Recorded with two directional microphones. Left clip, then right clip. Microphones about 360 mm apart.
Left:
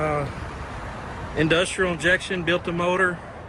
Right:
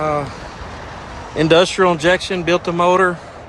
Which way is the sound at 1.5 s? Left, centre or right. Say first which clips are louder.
Right 14 dB; centre.